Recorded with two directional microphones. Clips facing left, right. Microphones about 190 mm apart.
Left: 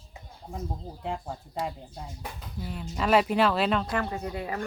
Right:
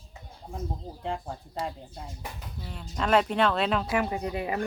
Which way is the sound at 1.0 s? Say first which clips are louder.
Right 1 dB; centre (ahead or behind).